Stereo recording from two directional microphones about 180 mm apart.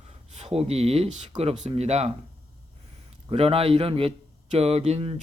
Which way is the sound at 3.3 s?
35° right (ahead or behind).